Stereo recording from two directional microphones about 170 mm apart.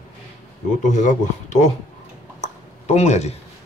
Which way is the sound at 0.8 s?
45° left (ahead or behind).